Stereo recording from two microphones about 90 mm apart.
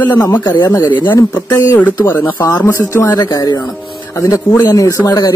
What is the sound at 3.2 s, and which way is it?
Speech, 45° left (ahead or behind).